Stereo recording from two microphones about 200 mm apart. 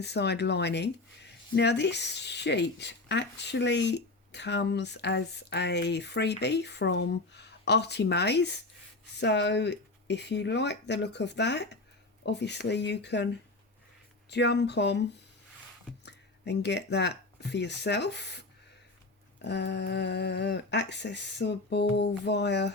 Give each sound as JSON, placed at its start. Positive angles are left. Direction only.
{"t": 0.0, "sound": "speech", "side_deg": 55}
{"t": 14.3, "sound": "speech", "side_deg": 60}
{"t": 16.0, "sound": "speech", "side_deg": 60}